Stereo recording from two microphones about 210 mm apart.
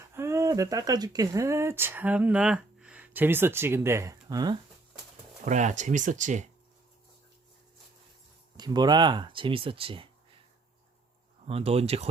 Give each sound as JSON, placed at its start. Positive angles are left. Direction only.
{"t": 0.1, "sound": "speech", "side_deg": -15}
{"t": 5.5, "sound": "speech", "side_deg": -35}
{"t": 8.5, "sound": "speech", "side_deg": -20}
{"t": 11.4, "sound": "speech", "side_deg": -30}